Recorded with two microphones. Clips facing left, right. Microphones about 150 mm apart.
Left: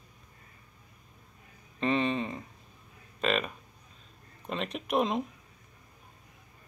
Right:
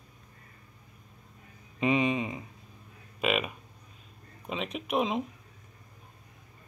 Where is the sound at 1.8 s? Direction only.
10° right (ahead or behind).